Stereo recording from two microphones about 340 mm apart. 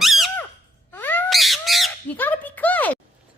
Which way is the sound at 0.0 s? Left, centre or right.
Centre.